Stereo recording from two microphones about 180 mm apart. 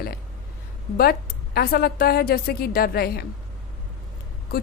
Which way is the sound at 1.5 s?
55° left (ahead or behind).